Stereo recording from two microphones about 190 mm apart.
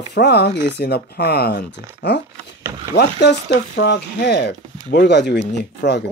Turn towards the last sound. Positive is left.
turn(degrees=60)  # may be behind; listen again after turning